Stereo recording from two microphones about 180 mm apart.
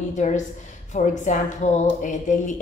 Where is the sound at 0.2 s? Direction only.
40° left (ahead or behind).